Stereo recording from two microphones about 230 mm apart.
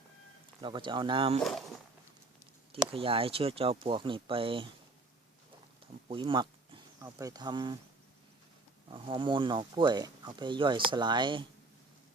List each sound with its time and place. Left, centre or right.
0.6 s speech: centre
2.9 s speech: right
5.8 s speech: right
8.9 s speech: right